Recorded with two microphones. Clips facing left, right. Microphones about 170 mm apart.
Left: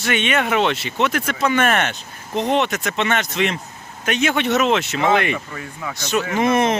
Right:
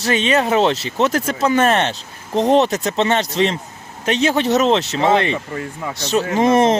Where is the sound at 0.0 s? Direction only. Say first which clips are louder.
Right 3 dB; 35° right (ahead or behind).